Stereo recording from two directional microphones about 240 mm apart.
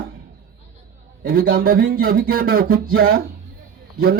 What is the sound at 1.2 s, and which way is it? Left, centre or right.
Speech, right.